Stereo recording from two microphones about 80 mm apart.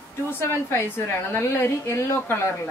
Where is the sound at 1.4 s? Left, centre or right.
Left.